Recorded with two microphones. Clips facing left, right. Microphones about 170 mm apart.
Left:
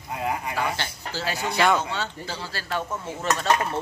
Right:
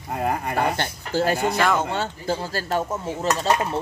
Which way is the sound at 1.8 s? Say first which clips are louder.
Right 4 dB; 50° right (ahead or behind).